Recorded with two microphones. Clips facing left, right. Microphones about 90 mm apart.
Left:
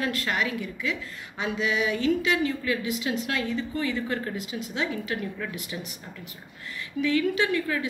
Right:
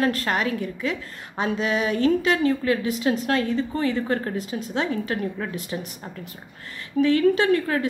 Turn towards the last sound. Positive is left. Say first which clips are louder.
# right 5 dB
turn(degrees=-40)  # may be behind; listen again after turning